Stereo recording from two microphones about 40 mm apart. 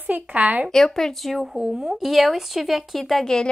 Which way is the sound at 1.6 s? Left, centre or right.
Centre.